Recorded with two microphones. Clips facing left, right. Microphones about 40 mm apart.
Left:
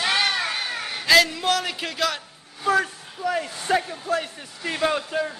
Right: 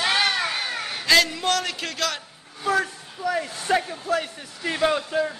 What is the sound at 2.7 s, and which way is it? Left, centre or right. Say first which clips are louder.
Speech: left 2 dB; centre.